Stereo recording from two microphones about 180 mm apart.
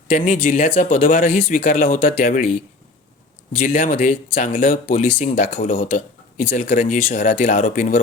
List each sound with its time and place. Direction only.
0.4 s speech: 40° left (ahead or behind)
3.6 s speech: 45° left (ahead or behind)